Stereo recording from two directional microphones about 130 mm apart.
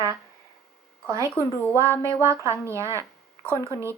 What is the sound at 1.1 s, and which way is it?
Speech, 25° right (ahead or behind).